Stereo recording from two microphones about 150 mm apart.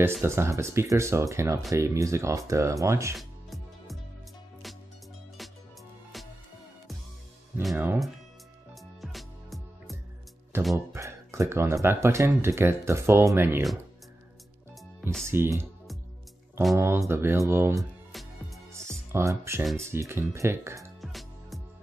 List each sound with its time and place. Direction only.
0.2 s speech: 20° right (ahead or behind)
3.2 s music: centre (ahead or behind)
7.7 s speech: 15° right (ahead or behind)
9.0 s music: centre (ahead or behind)
10.5 s music: 15° right (ahead or behind)
10.9 s speech: 20° right (ahead or behind)
15.2 s speech: 15° right (ahead or behind)
16.7 s speech: 20° right (ahead or behind)
18.1 s music: centre (ahead or behind)
18.8 s music: 20° right (ahead or behind)
19.6 s speech: centre (ahead or behind)
19.9 s speech: 15° right (ahead or behind)
21.0 s music: centre (ahead or behind)